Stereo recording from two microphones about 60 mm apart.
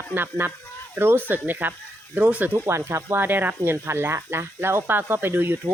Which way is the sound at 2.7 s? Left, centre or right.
Right.